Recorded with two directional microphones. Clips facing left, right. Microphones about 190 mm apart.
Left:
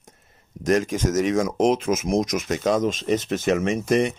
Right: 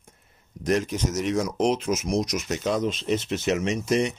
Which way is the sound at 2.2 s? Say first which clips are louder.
Left 3 dB; 90° left.